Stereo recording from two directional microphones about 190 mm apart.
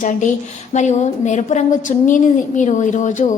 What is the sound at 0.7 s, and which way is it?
A woman's voice, 40° left (ahead or behind).